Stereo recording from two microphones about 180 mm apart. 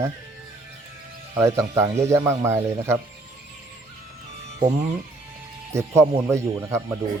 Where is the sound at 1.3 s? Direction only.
15° right (ahead or behind).